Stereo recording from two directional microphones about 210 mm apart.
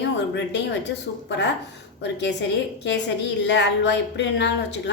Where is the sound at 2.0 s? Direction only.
55° left (ahead or behind).